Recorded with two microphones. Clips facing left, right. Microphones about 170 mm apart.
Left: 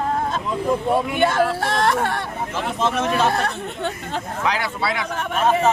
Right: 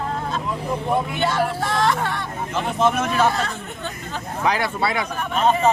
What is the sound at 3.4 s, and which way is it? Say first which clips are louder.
Speech: left 5 dB; 65° left (ahead or behind).